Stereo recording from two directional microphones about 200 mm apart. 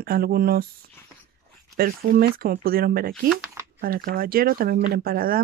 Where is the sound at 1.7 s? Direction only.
50° right (ahead or behind).